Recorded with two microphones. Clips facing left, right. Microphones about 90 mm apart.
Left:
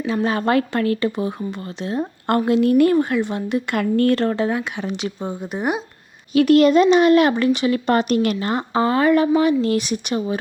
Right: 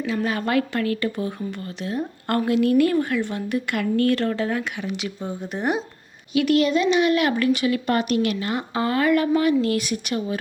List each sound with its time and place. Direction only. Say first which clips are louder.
0.0 s speech: left 4 dB; 30° left (ahead or behind)
3.8 s a woman's voice: left 3 dB; 40° left (ahead or behind); by 4.8 s 20° left (ahead or behind)
4.8 s a woman's voice: left 3 dB; 30° left (ahead or behind)
5.4 s speech: left 1 dB; 15° left (ahead or behind)
6.3 s speech: left 6 dB; 40° left (ahead or behind); by 10.3 s 25° left (ahead or behind)